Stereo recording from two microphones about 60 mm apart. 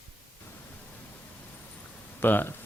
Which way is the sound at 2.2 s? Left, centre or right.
Left.